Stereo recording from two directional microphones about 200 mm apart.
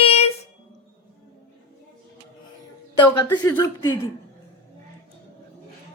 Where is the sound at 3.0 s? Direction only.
10° left (ahead or behind).